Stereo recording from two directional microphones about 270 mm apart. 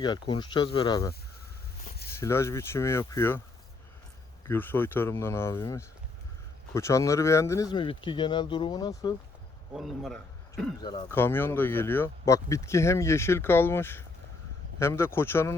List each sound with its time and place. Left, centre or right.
0.0 s speech: centre
1.8 s a sound: left
2.1 s speech: centre
4.4 s speech: centre
9.7 s speech: centre
10.8 s speech: centre